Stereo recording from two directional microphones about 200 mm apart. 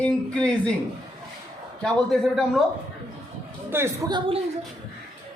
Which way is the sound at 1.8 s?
Centre (ahead or behind).